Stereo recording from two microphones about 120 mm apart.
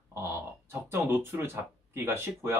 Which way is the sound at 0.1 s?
20° right (ahead or behind).